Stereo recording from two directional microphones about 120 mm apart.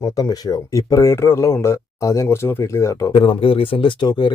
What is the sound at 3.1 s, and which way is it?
Speech, 50° left (ahead or behind).